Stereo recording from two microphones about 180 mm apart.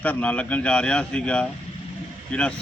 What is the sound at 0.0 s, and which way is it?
A man's voice, 10° left (ahead or behind).